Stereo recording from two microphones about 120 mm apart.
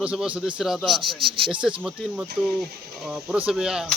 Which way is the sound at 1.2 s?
45° right (ahead or behind).